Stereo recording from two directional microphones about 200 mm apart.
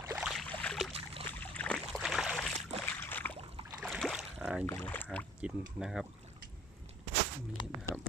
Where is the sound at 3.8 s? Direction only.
Centre (ahead or behind).